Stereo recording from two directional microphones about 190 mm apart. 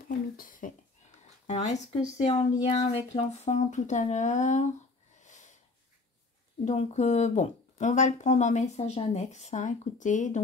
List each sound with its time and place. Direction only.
0.4 s cough: 45° left (ahead or behind)
1.5 s speech: 35° left (ahead or behind)
5.2 s a sound: 40° left (ahead or behind)
6.6 s speech: 35° left (ahead or behind)